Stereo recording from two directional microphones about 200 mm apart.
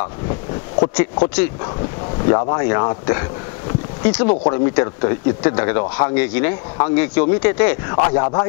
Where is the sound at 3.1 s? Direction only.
20° left (ahead or behind).